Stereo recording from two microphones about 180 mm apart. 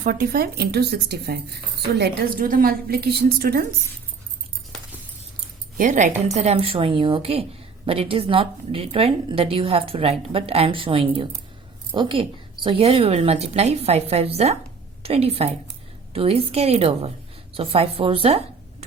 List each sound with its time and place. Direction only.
0.0 s a woman's voice: 55° right (ahead or behind)
5.7 s a woman's voice: 45° right (ahead or behind)